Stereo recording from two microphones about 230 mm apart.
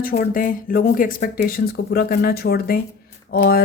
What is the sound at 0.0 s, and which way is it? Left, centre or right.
Speech, left.